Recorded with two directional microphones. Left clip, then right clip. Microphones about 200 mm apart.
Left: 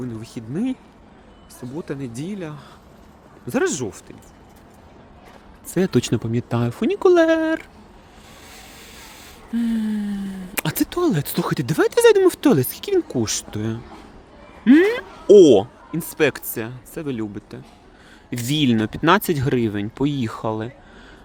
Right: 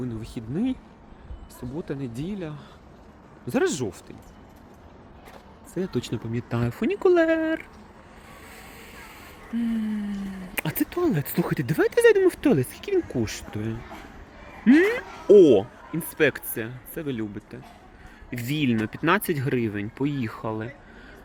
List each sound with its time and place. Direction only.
0.0 s speech: 5° left (ahead or behind)
5.7 s speech: 50° left (ahead or behind)
6.3 s speech: 25° left (ahead or behind)